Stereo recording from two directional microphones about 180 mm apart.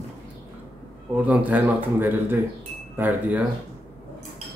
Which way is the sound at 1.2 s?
10° right (ahead or behind).